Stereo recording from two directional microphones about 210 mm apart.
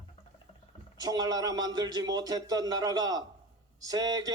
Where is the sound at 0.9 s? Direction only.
15° right (ahead or behind).